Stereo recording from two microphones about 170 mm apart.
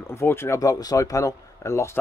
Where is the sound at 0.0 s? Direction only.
15° left (ahead or behind).